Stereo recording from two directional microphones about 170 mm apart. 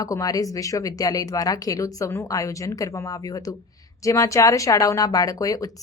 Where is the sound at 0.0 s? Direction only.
20° left (ahead or behind).